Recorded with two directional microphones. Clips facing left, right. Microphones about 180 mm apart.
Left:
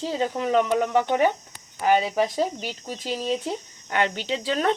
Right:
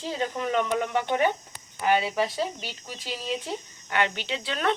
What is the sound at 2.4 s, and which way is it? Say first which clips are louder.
Speech: left 5 dB; 40° left (ahead or behind).